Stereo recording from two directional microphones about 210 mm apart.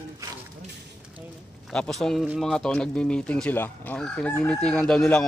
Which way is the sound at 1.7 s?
5° left (ahead or behind).